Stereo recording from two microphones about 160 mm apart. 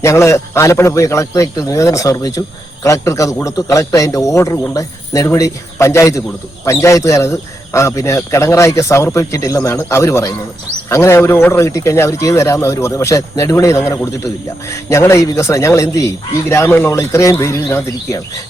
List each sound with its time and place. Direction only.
0.0 s speech: 15° left (ahead or behind)